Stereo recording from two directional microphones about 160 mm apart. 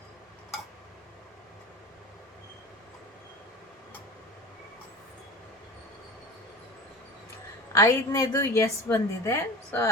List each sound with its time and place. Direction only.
7.7 s a woman's voice: 20° left (ahead or behind)